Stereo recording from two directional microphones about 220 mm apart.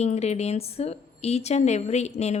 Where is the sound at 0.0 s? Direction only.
30° left (ahead or behind).